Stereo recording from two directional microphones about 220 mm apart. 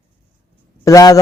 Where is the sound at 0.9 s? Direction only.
15° left (ahead or behind).